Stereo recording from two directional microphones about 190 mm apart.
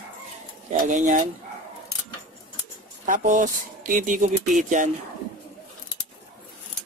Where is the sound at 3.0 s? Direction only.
45° right (ahead or behind).